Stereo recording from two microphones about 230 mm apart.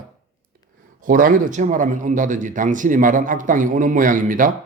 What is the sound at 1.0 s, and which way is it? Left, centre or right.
Speech, right.